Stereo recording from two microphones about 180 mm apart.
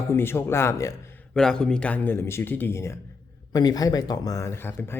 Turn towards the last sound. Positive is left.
turn(degrees=10)  # may be behind; listen again after turning